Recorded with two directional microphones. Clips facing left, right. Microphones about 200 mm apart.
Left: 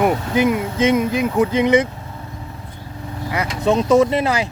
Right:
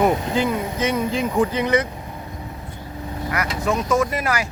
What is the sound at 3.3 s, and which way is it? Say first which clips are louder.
Speech: left 5 dB; 25° left (ahead or behind).